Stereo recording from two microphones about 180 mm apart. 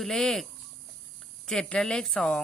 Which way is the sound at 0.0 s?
Centre (ahead or behind).